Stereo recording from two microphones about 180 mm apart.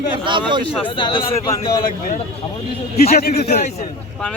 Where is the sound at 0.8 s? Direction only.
30° left (ahead or behind).